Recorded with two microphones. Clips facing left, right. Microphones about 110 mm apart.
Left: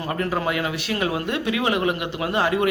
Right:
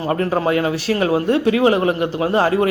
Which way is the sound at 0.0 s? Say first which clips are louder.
Right 6 dB; 35° right (ahead or behind).